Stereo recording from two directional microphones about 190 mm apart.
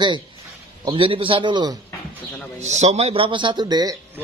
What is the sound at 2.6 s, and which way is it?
Speech, 35° right (ahead or behind).